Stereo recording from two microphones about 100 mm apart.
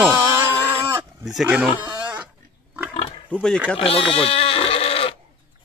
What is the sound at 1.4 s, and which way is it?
Speech, 10° right (ahead or behind).